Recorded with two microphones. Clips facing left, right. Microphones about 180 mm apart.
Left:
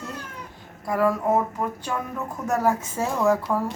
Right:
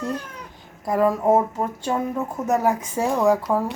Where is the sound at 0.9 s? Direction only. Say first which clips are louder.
Right 3 dB; 20° right (ahead or behind).